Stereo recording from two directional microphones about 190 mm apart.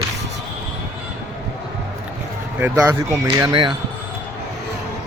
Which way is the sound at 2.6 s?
15° right (ahead or behind).